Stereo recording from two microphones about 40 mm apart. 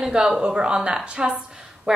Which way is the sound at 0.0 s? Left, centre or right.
Centre.